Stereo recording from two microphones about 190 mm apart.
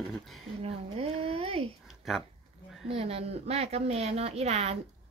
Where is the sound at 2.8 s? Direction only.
30° right (ahead or behind).